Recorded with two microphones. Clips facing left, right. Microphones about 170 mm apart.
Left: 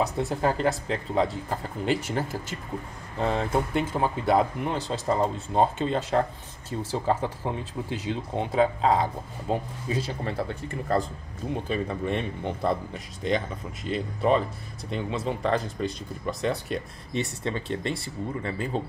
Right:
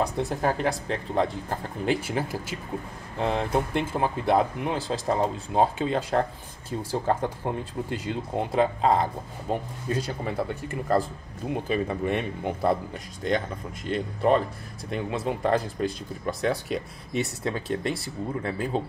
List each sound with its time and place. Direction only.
0.0 s speech: centre (ahead or behind)